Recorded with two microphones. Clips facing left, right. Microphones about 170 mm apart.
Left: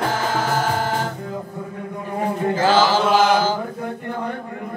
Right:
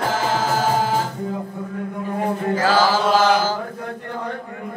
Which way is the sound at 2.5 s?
25° left (ahead or behind).